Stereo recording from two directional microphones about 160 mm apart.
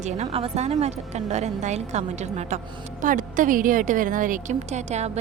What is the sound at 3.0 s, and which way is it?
A woman's voice, 55° right (ahead or behind).